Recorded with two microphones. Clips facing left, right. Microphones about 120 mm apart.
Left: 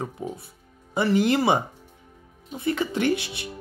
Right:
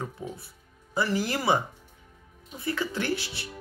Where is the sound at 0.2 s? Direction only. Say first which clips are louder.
Left 5 dB; 20° left (ahead or behind).